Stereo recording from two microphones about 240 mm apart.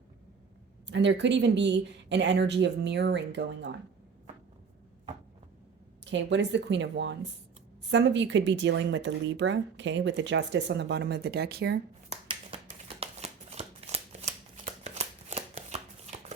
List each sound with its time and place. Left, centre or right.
0.9 s speech: right
6.1 s speech: right
12.0 s shuffling cards: right